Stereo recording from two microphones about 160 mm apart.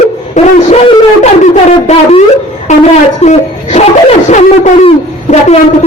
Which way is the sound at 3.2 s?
45° left (ahead or behind).